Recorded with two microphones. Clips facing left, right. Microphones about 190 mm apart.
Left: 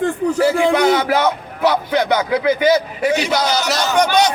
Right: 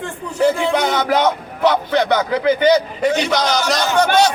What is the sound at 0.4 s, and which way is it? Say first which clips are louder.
A man's voice: left 1 dB; 10° left (ahead or behind).